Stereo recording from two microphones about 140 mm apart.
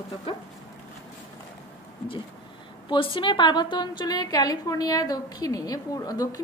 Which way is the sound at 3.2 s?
35° left (ahead or behind).